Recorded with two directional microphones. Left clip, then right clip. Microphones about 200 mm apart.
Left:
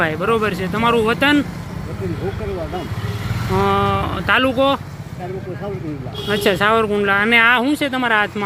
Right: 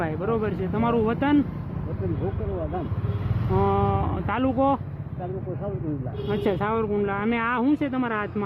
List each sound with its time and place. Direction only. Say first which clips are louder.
0.0 s speech: left 9 dB; 15° left (ahead or behind)
3.6 s speech: left 7 dB; 10° left (ahead or behind)
6.2 s speech: left 10 dB; 15° left (ahead or behind)